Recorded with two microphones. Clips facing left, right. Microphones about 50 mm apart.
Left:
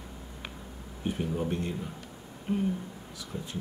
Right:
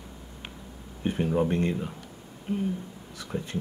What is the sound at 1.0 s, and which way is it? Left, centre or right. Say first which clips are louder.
Speech: right 6 dB; right.